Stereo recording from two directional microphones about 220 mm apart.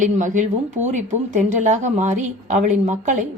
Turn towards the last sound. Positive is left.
turn(degrees=-35)  # may be behind; listen again after turning